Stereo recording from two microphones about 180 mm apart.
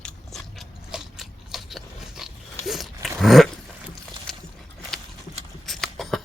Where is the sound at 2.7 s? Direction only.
Centre (ahead or behind).